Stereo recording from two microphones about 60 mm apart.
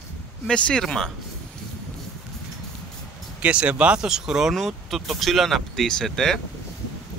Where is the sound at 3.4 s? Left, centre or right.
Right.